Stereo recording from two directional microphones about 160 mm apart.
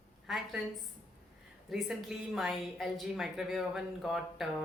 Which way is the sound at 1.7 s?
Centre (ahead or behind).